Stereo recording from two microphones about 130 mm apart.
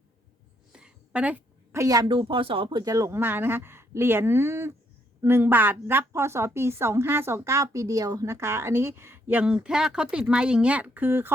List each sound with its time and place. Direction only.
0.7 s a sound: 5° right (ahead or behind)
1.7 s a woman's voice: 25° right (ahead or behind)
2.0 s a woman's voice: 40° right (ahead or behind); by 11.3 s 15° right (ahead or behind)